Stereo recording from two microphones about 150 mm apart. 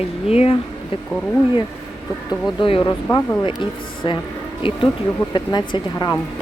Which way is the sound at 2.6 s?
35° left (ahead or behind).